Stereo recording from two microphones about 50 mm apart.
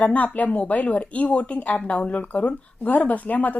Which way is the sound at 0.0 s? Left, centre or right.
Left.